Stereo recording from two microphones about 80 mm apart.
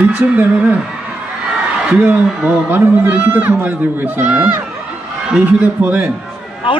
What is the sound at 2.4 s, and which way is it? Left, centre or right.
A man's voice, right.